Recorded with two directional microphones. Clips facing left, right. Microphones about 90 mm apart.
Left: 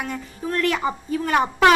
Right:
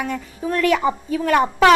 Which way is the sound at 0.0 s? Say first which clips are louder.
Right 4 dB; centre (ahead or behind).